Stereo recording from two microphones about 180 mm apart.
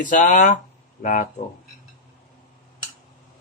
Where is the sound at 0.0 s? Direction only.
45° left (ahead or behind).